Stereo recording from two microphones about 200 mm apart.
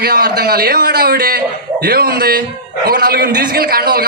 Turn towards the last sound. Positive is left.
turn(degrees=-50)  # may be behind; listen again after turning